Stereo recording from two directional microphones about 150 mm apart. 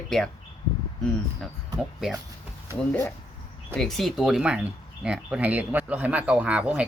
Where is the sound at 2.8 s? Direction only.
10° left (ahead or behind).